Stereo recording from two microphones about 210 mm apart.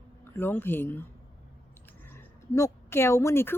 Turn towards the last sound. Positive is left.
turn(degrees=10)  # may be behind; listen again after turning